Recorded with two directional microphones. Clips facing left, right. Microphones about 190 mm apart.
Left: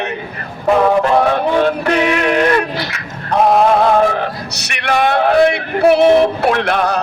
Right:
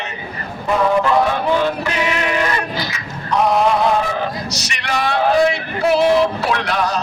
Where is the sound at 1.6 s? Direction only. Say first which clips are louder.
Left 5 dB; 60° left (ahead or behind).